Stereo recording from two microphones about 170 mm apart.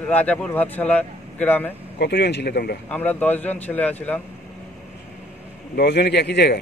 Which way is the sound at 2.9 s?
10° left (ahead or behind).